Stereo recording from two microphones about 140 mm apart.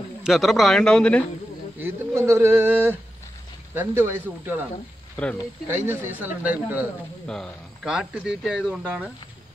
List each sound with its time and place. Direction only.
0.2 s a man's voice: centre (ahead or behind)
1.8 s speech: 15° right (ahead or behind)
5.1 s speech: 10° left (ahead or behind)
5.7 s speech: 15° right (ahead or behind)
7.2 s a man's voice: 5° left (ahead or behind)
7.8 s speech: 5° right (ahead or behind)